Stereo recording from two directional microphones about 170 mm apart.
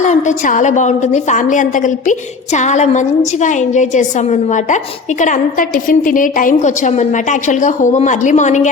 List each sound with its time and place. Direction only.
0.0 s a woman's voice: 45° left (ahead or behind)